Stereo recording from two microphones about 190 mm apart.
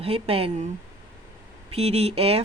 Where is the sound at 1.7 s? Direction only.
30° right (ahead or behind).